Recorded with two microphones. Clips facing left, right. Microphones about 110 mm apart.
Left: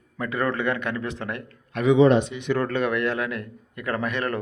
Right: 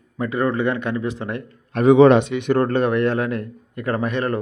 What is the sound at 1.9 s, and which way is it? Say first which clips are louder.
Speech: right 5 dB; 70° right (ahead or behind).